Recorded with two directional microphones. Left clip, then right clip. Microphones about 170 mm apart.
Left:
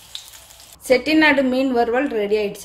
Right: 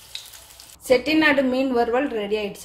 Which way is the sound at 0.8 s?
15° left (ahead or behind).